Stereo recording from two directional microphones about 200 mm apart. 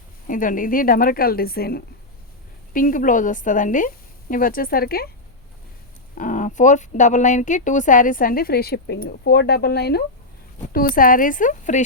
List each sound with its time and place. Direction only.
0.3 s a woman's voice: 40° left (ahead or behind)
6.1 s a woman's voice: 40° left (ahead or behind)